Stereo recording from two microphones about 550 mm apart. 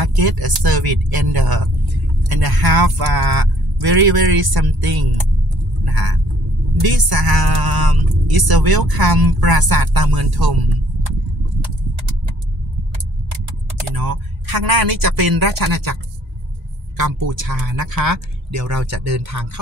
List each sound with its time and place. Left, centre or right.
0.0 s a woman's voice: right
5.9 s vehicle: right
6.8 s a woman's voice: right
13.9 s a woman's voice: right
17.0 s a woman's voice: right